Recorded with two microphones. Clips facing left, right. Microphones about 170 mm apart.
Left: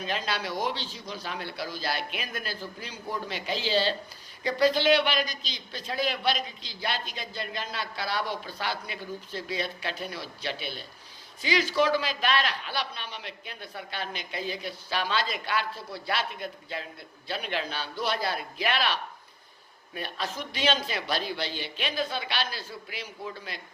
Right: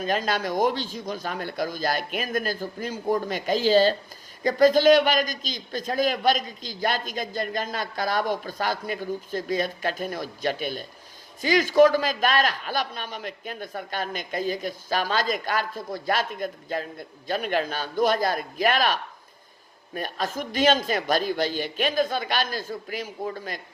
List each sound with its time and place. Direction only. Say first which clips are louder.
0.0 s a man's voice: right 6 dB; 45° right (ahead or behind)